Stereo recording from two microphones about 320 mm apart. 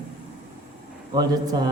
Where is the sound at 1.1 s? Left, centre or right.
Centre.